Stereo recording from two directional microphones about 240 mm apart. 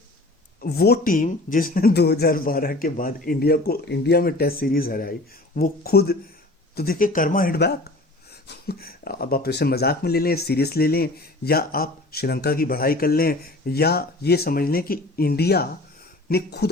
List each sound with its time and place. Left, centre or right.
0.6 s speech: left